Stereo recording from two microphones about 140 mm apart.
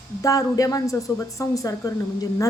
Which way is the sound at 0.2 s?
25° left (ahead or behind).